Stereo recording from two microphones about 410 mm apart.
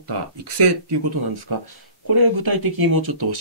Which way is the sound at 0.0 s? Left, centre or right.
Right.